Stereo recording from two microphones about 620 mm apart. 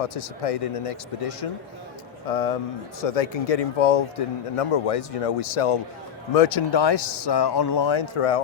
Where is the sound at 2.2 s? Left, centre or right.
Left.